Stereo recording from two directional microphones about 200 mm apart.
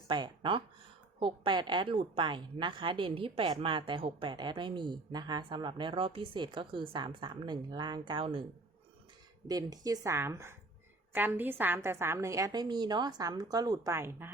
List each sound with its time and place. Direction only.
0.1 s a woman's voice: 25° right (ahead or behind)
9.5 s a woman's voice: 20° right (ahead or behind)